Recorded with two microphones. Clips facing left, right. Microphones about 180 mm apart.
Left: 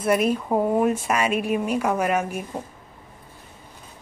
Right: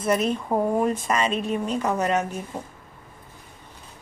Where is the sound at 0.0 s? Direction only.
10° left (ahead or behind).